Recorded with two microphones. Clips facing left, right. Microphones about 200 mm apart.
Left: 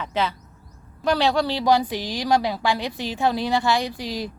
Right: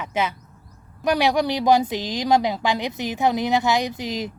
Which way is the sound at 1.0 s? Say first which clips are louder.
Right 1 dB; 15° right (ahead or behind).